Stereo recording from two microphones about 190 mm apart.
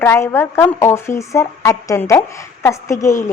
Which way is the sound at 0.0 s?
15° left (ahead or behind).